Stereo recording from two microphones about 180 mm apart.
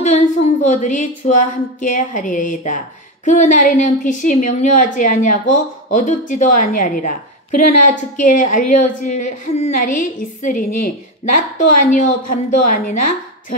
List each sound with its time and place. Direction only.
0.0 s a woman's voice: 40° left (ahead or behind)